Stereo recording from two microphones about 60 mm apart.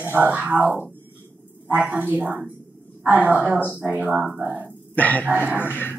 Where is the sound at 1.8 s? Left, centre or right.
Right.